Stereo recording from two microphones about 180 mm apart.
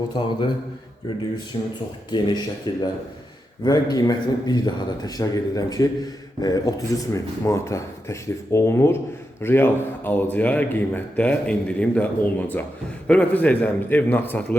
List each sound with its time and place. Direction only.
0.2 s speech: 25° left (ahead or behind)
2.0 s a man's voice: 25° left (ahead or behind)